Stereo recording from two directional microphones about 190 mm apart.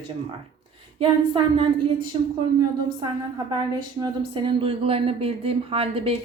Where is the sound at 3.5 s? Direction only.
25° right (ahead or behind).